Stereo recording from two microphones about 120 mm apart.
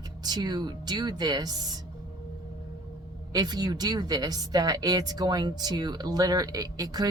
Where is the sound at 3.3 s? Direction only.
35° right (ahead or behind).